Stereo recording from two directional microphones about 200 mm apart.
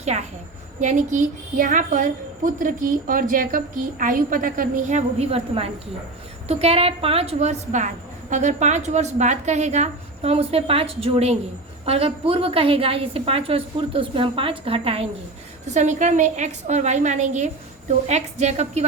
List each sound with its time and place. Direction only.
0.0 s a woman's voice: 35° right (ahead or behind)